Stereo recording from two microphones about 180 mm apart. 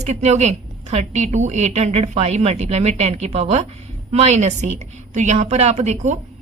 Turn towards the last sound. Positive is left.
turn(degrees=-40)  # may be behind; listen again after turning